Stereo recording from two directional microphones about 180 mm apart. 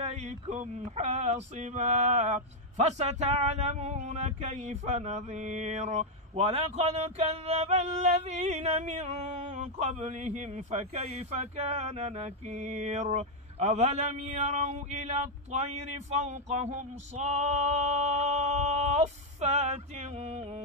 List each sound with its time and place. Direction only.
0.0 s speech: 40° right (ahead or behind)